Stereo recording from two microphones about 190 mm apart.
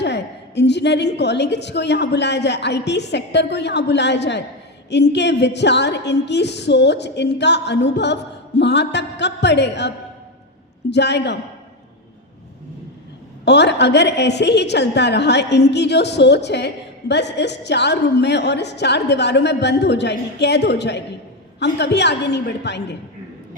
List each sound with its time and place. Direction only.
0.0 s a woman's voice: 65° left (ahead or behind)
13.4 s a woman's voice: 65° left (ahead or behind)